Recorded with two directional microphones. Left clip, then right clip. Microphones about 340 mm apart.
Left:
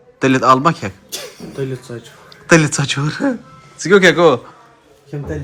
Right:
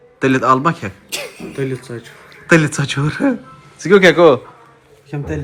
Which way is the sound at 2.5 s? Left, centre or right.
Centre.